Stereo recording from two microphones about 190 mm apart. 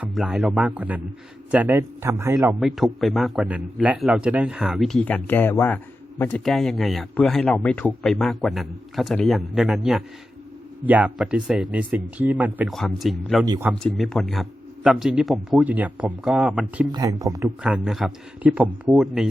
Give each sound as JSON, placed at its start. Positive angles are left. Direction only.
{"t": 0.0, "sound": "a man's voice", "side_deg": 0}
{"t": 2.6, "sound": "a man's voice", "side_deg": 0}
{"t": 16.9, "sound": "a man's voice", "side_deg": -20}
{"t": 17.6, "sound": "a man's voice", "side_deg": -5}